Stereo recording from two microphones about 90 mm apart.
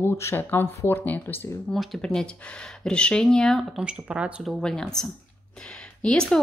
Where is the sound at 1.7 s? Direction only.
Centre (ahead or behind).